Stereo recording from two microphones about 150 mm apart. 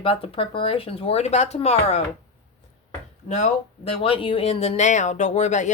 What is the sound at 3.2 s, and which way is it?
Speech, 45° left (ahead or behind).